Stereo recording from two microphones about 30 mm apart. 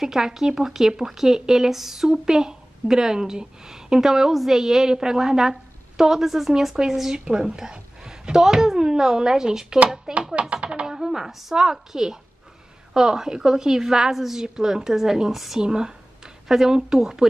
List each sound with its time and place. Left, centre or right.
0.0 s a woman's voice: centre
2.0 s a woman's voice: right
6.8 s a woman's voice: right
10.5 s speech: right
10.9 s a woman's voice: centre
15.3 s speech: centre
15.6 s a woman's voice: right